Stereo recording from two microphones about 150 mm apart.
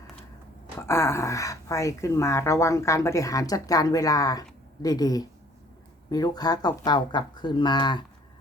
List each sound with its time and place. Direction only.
0.8 s speech: 15° left (ahead or behind)